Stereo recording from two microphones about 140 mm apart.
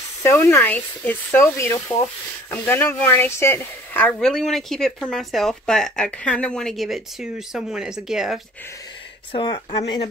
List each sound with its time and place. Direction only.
0.2 s speech: 20° left (ahead or behind); by 8.4 s 5° right (ahead or behind)
9.3 s speech: 35° left (ahead or behind)